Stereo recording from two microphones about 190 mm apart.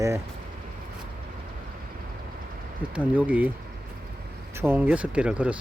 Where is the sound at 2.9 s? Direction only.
5° right (ahead or behind).